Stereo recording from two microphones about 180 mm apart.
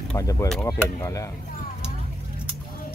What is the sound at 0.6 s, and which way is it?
Speech, 15° left (ahead or behind).